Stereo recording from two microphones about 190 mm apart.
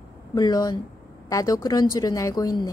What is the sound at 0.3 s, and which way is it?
A woman's voice, 20° left (ahead or behind).